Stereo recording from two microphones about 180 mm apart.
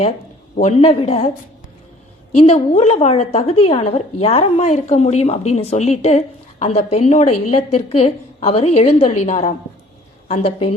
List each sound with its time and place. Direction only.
0.8 s a woman's voice: 35° left (ahead or behind)
2.3 s a woman's voice: 35° left (ahead or behind)